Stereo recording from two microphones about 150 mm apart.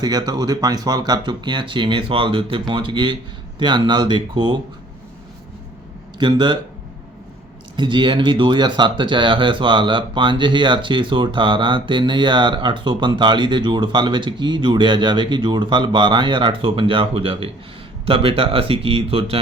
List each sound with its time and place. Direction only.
0.0 s speech: 25° right (ahead or behind)
6.1 s speech: 30° right (ahead or behind)
7.8 s speech: 30° right (ahead or behind)